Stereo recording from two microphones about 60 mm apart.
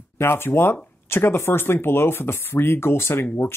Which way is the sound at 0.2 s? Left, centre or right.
Left.